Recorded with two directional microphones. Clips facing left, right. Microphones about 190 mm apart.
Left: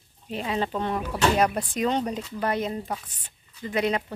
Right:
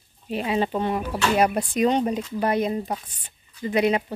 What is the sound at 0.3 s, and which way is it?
Speech, 10° right (ahead or behind).